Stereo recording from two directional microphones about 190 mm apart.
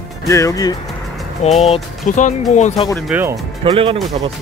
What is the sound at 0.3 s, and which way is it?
Speech, 15° left (ahead or behind).